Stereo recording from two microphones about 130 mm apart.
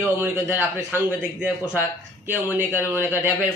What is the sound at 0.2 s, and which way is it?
A man's voice, 15° right (ahead or behind).